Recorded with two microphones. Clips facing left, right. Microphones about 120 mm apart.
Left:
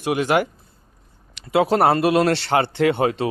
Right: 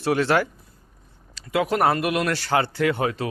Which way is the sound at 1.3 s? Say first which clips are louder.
Left 5 dB; 30° left (ahead or behind).